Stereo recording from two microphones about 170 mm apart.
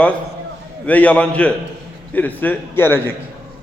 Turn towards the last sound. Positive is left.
turn(degrees=15)  # may be behind; listen again after turning